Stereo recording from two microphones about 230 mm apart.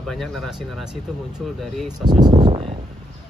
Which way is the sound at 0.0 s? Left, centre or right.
Centre.